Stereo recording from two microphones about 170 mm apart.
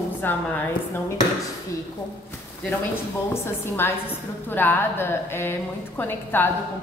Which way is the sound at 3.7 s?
10° left (ahead or behind).